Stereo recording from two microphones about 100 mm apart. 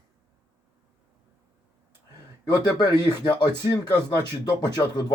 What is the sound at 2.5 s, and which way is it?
Speech, 40° left (ahead or behind).